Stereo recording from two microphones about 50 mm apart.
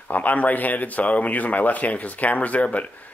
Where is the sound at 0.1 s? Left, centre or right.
Left.